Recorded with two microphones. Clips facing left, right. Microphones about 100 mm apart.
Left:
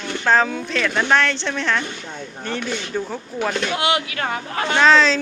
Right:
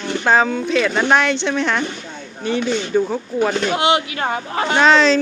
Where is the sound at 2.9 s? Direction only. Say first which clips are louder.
Right 10 dB; 20° right (ahead or behind).